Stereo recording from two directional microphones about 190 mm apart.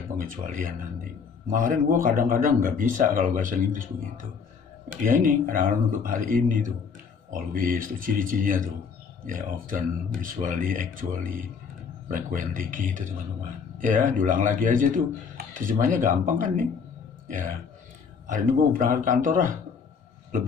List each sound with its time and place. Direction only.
0.2 s a man's voice: 45° right (ahead or behind)
5.0 s a man's voice: 45° right (ahead or behind)